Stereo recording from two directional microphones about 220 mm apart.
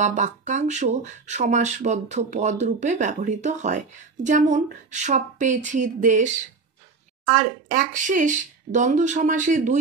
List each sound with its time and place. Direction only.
0.0 s speech: 35° right (ahead or behind)
7.7 s speech: 35° right (ahead or behind)